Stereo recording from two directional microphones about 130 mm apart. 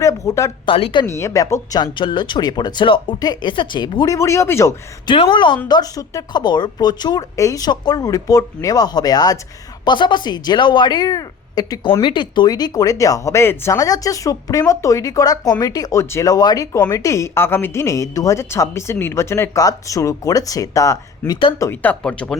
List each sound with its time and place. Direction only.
0.0 s speech: 25° left (ahead or behind)
0.6 s speech: 40° left (ahead or behind)
1.0 s speech: 20° left (ahead or behind)
5.0 s a woman's voice: 40° left (ahead or behind); by 21.3 s 25° left (ahead or behind)
21.6 s speech: 15° left (ahead or behind)